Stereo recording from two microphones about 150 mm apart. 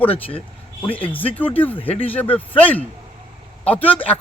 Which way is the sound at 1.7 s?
40° left (ahead or behind).